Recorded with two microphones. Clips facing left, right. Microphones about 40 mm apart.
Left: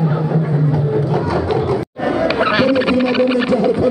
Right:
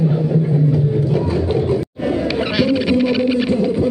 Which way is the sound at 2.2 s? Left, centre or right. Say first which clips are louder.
Left 5 dB; left.